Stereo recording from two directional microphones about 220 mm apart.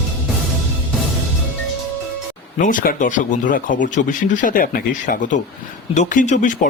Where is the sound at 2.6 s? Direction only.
35° left (ahead or behind).